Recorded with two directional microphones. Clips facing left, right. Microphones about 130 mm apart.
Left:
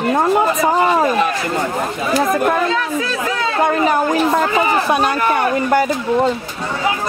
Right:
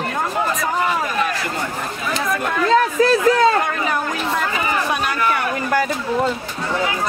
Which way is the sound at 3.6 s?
35° left (ahead or behind).